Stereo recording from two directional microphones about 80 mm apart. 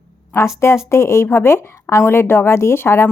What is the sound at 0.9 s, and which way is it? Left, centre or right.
Speech, left.